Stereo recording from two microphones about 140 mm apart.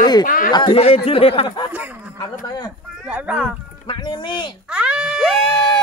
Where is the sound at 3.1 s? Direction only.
10° right (ahead or behind).